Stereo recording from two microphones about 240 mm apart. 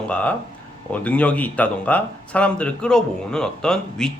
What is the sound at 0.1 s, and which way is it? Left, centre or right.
Speech, centre.